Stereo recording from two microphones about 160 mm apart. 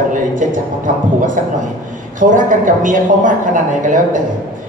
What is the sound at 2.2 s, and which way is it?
A man's voice, 55° right (ahead or behind).